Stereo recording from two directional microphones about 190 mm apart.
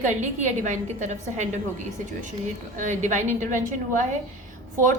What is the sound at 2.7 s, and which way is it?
A woman's voice, 40° right (ahead or behind).